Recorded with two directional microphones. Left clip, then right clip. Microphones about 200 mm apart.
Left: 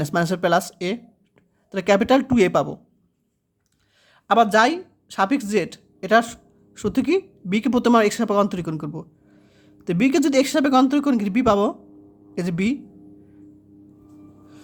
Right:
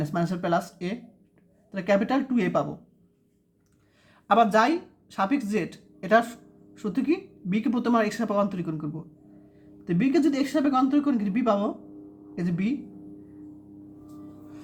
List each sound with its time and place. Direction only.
0.0 s speech: 45° left (ahead or behind)
4.1 s speech: 30° left (ahead or behind)